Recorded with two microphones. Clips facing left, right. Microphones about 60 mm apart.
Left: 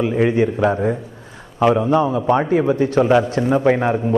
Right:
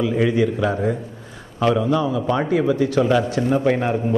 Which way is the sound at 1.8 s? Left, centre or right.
Left.